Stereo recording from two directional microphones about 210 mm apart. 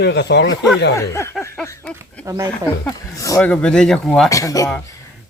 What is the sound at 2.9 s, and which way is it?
Speech, 10° left (ahead or behind).